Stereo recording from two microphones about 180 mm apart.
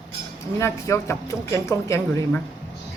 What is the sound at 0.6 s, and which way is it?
Speech, 15° left (ahead or behind).